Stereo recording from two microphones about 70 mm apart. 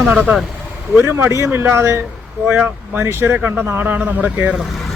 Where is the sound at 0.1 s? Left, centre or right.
Right.